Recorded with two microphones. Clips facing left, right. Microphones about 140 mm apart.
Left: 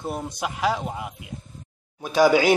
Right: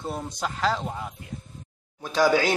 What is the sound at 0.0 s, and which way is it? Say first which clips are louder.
A man's voice: left 2 dB; 10° left (ahead or behind).